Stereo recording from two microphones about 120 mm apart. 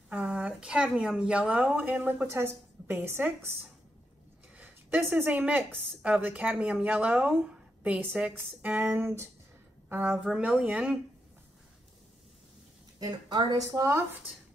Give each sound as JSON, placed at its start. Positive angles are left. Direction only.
{"t": 0.1, "sound": "speech", "side_deg": -10}
{"t": 4.6, "sound": "speech", "side_deg": -15}
{"t": 10.1, "sound": "speech", "side_deg": -5}
{"t": 13.0, "sound": "a woman's voice", "side_deg": -30}